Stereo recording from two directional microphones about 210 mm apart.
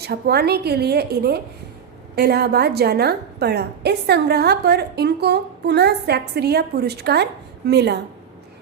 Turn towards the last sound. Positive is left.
turn(degrees=-50)  # may be behind; listen again after turning